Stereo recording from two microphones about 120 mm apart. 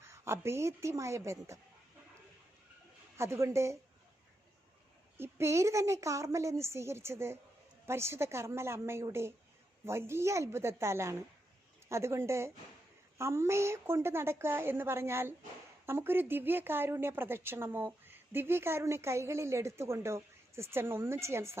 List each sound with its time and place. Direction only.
0.0 s speech: 20° right (ahead or behind)
3.2 s speech: 25° right (ahead or behind)
5.1 s speech: 20° right (ahead or behind)